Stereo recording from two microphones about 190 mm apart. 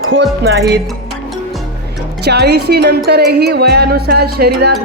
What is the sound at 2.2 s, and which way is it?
Speech, 60° right (ahead or behind).